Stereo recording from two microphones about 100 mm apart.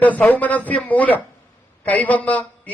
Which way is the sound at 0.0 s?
15° left (ahead or behind).